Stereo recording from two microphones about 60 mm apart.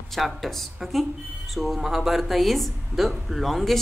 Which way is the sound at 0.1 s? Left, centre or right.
Centre.